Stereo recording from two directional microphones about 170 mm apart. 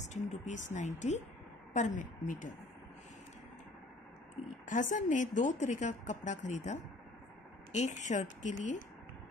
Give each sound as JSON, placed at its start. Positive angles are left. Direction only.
{"t": 0.1, "sound": "a woman's voice", "side_deg": 45}
{"t": 4.6, "sound": "a woman's voice", "side_deg": 50}